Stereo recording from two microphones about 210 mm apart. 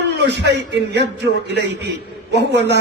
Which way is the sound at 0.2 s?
55° right (ahead or behind).